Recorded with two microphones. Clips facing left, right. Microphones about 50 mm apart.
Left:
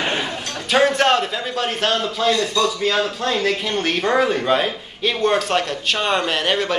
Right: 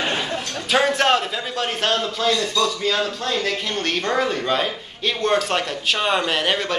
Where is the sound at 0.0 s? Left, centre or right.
Centre.